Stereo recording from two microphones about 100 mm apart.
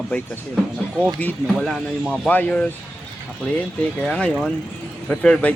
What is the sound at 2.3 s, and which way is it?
Speech, 15° left (ahead or behind).